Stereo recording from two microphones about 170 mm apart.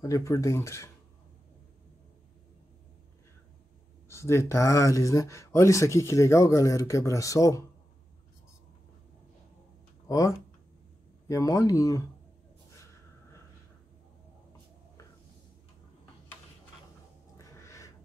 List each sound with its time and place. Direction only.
0.0 s speech: 20° left (ahead or behind)
4.1 s speech: 15° left (ahead or behind)
10.0 s speech: 20° left (ahead or behind)
17.4 s a sound: 20° left (ahead or behind)